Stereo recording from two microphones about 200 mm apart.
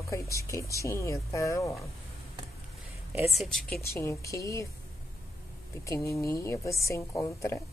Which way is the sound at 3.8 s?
15° left (ahead or behind).